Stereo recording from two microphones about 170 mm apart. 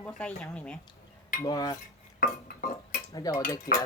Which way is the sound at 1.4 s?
20° left (ahead or behind).